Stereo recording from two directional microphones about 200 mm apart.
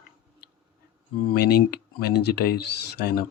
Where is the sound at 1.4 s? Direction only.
50° left (ahead or behind).